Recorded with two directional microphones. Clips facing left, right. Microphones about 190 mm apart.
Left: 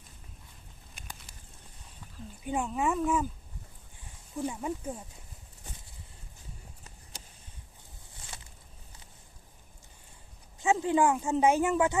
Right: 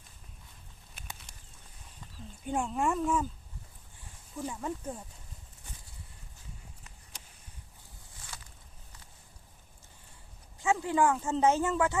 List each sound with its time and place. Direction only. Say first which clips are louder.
2.4 s speech: even; 5° left (ahead or behind)
4.4 s speech: left 3 dB; 15° left (ahead or behind)
10.6 s speech: left 2 dB; 20° left (ahead or behind)